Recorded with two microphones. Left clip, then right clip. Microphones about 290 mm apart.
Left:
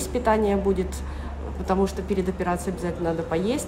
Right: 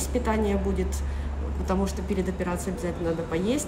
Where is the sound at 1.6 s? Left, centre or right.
Centre.